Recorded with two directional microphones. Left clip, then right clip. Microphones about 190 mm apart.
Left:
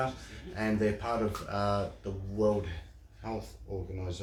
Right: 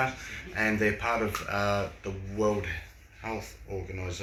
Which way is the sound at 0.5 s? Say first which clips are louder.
Right 4 dB; 5° left (ahead or behind).